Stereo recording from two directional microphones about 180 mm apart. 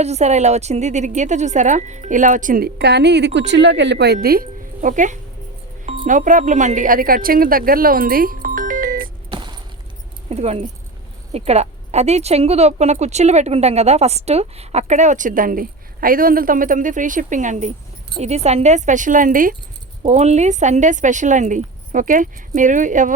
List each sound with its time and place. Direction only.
0.0 s a woman's voice: 35° right (ahead or behind)
9.3 s a sound: 25° right (ahead or behind)
10.2 s a woman's voice: 35° right (ahead or behind)
20.1 s a woman's voice: 40° right (ahead or behind)